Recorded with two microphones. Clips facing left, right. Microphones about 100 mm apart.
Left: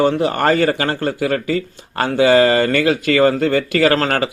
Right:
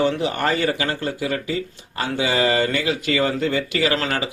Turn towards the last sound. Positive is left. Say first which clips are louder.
# left 6 dB
turn(degrees=55)  # may be behind; listen again after turning